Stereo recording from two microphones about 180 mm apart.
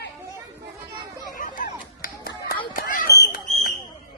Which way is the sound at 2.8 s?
55° left (ahead or behind).